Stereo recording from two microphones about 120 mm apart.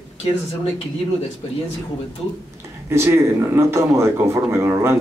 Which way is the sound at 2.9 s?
20° right (ahead or behind).